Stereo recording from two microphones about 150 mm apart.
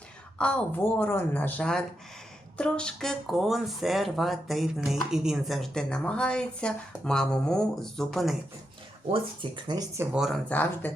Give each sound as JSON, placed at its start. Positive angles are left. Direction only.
{"t": 0.3, "sound": "speech", "side_deg": 5}
{"t": 9.4, "sound": "speech", "side_deg": -30}
{"t": 10.0, "sound": "speech", "side_deg": -5}
{"t": 10.5, "sound": "speech", "side_deg": 15}